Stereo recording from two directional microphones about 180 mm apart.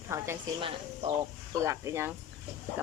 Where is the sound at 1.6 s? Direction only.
15° right (ahead or behind).